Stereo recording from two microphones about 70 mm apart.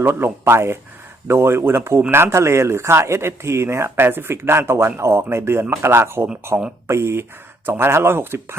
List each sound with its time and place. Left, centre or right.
0.0 s speech: right